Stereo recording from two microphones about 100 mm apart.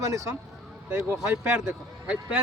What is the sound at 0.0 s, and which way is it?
Speech, 30° right (ahead or behind).